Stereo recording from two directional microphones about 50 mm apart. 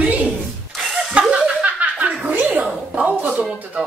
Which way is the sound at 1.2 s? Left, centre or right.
Right.